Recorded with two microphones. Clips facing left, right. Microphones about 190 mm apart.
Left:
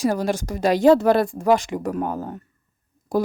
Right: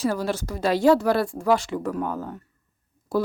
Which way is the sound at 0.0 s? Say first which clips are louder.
Left 3 dB; 15° left (ahead or behind).